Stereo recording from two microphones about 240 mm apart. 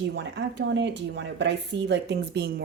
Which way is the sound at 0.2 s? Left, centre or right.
Right.